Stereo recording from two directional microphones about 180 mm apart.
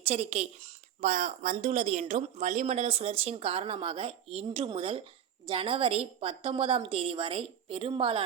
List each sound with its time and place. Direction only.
0.0 s a woman's voice: 35° right (ahead or behind)